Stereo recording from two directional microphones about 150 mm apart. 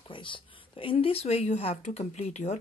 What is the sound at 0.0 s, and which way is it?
Speech, 35° left (ahead or behind).